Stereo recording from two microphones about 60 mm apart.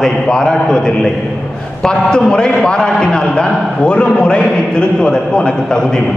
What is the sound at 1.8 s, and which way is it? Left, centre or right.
A man's voice, centre.